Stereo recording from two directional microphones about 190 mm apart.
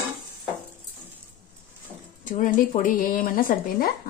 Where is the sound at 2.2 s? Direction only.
45° left (ahead or behind).